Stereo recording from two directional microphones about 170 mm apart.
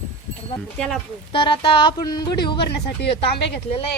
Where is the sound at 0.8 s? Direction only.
5° left (ahead or behind).